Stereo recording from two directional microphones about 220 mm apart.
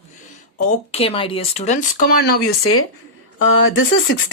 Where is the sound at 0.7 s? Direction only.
25° left (ahead or behind); by 2.4 s 45° left (ahead or behind).